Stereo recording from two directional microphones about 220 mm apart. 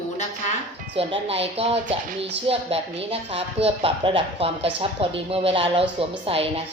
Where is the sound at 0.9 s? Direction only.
25° right (ahead or behind).